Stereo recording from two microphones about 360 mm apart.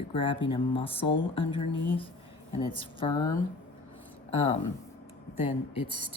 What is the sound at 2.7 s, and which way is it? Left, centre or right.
Speech, centre.